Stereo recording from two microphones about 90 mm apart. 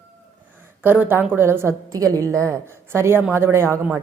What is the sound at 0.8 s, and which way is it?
Speech, 25° right (ahead or behind).